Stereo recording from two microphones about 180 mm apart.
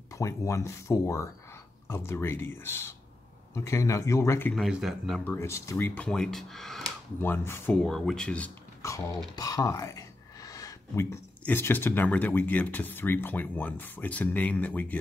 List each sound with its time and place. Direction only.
0.1 s speech: 15° left (ahead or behind)
4.6 s speech: centre (ahead or behind)
5.2 s speech: 15° left (ahead or behind)
7.2 s speech: 15° left (ahead or behind)
7.8 s speech: centre (ahead or behind)
9.3 s speech: 20° left (ahead or behind)